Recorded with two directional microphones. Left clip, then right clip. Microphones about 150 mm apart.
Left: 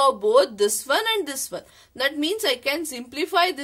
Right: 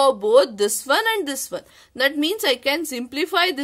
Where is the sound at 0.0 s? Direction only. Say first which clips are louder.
Right 2 dB; 40° right (ahead or behind).